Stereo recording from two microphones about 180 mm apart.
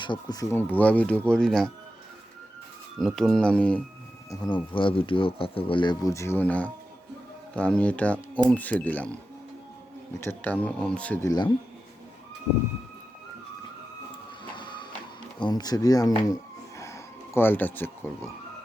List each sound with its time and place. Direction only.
0.0 s speech: 25° left (ahead or behind)
0.5 s speech: 10° left (ahead or behind)
3.0 s speech: centre (ahead or behind)
4.7 s speech: 30° left (ahead or behind)
14.4 s printer: 25° left (ahead or behind)
15.4 s speech: 25° left (ahead or behind)